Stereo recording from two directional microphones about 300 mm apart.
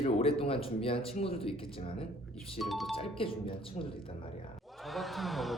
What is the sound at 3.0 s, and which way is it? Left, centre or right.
Speech, centre.